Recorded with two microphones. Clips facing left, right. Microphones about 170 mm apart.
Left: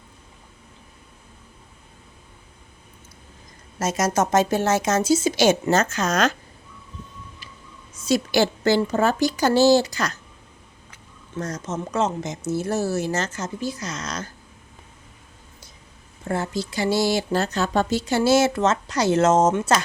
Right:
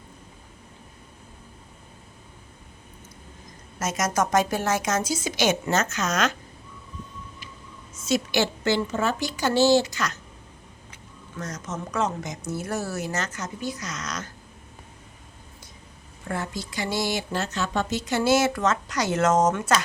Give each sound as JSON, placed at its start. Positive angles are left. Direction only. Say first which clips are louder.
{"t": 3.8, "sound": "speech", "louder": "left 3 dB", "side_deg": 30}
{"t": 8.0, "sound": "a woman's voice", "louder": "left 4 dB", "side_deg": 35}
{"t": 11.3, "sound": "speech", "louder": "left 5 dB", "side_deg": 30}
{"t": 16.3, "sound": "speech", "louder": "left 5 dB", "side_deg": 30}